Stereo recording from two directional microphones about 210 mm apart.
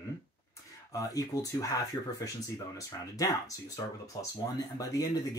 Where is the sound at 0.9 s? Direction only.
15° left (ahead or behind).